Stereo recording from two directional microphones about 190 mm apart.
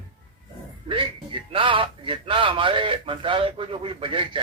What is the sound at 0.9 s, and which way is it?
Speech, 25° right (ahead or behind).